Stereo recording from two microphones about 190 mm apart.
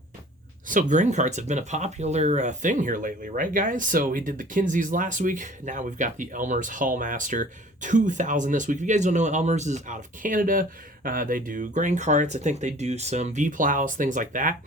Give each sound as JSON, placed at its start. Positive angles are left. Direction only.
{"t": 0.7, "sound": "speech", "side_deg": -40}